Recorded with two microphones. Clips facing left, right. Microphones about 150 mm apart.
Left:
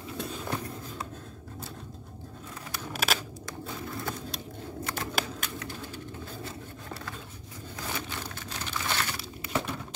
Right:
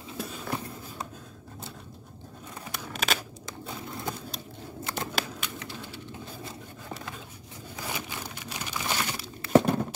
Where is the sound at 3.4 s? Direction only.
20° right (ahead or behind).